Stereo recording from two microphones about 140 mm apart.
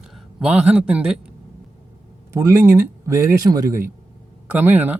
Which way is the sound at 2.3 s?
20° right (ahead or behind).